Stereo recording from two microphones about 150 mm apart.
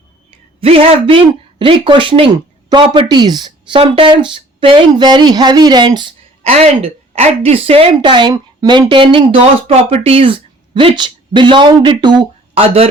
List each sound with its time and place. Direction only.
0.6 s a woman's voice: 40° right (ahead or behind)
6.4 s a woman's voice: 45° right (ahead or behind)